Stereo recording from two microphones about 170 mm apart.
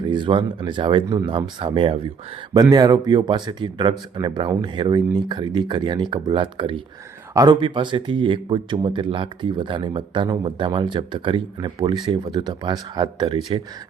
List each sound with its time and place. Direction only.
0.0 s speech: 30° right (ahead or behind)